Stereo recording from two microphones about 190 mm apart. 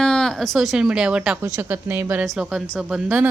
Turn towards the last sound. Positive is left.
turn(degrees=-5)  # may be behind; listen again after turning